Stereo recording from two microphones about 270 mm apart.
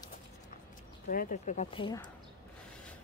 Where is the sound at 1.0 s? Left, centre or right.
Left.